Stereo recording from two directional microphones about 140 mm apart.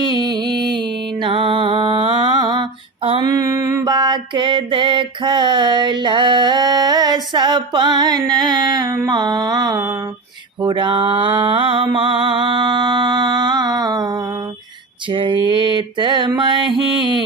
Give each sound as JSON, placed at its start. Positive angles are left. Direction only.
{"t": 0.0, "sound": "a sound", "side_deg": -30}
{"t": 1.2, "sound": "mantra", "side_deg": -40}
{"t": 3.2, "sound": "mantra", "side_deg": -25}